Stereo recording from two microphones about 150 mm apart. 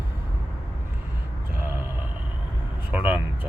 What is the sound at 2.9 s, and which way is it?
Speech, 10° right (ahead or behind).